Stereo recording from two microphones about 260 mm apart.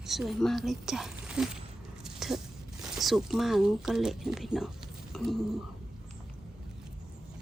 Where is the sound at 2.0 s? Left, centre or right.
Centre.